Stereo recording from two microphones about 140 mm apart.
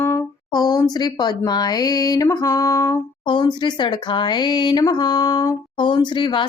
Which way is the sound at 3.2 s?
30° left (ahead or behind).